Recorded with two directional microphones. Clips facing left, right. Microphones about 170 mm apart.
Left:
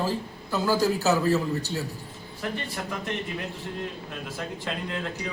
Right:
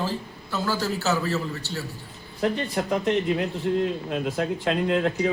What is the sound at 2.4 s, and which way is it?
Speech, 50° right (ahead or behind).